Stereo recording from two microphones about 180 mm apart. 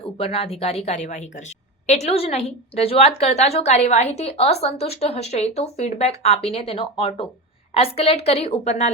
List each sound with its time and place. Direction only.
0.2 s a woman's voice: 35° left (ahead or behind)